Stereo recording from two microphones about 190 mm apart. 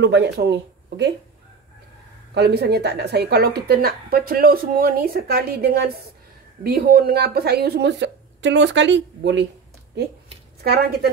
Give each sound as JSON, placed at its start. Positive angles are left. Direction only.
{"t": 0.0, "sound": "speech", "side_deg": -60}
{"t": 2.3, "sound": "a woman's voice", "side_deg": -60}
{"t": 10.6, "sound": "a woman's voice", "side_deg": -55}